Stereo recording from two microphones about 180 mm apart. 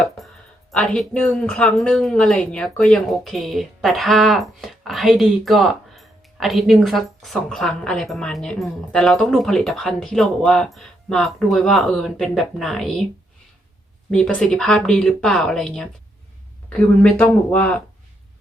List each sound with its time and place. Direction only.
0.7 s speech: centre (ahead or behind)
14.1 s speech: 5° left (ahead or behind)